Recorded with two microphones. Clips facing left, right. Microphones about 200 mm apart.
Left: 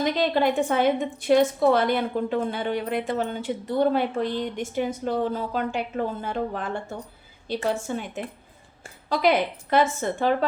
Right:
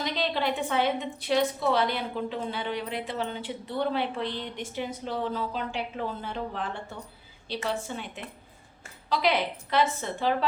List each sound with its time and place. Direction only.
0.0 s a woman's voice: 50° left (ahead or behind)